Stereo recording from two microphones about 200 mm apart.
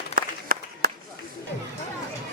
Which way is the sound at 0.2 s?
45° right (ahead or behind).